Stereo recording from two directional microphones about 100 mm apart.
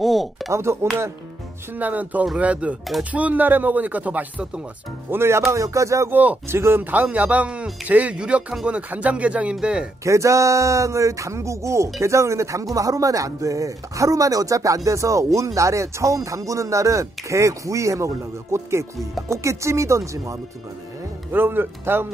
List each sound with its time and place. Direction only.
0.0 s a sound: centre (ahead or behind)
0.5 s speech: 25° right (ahead or behind)
1.8 s speech: 15° right (ahead or behind)
10.0 s speech: 30° right (ahead or behind)
21.3 s speech: 20° right (ahead or behind)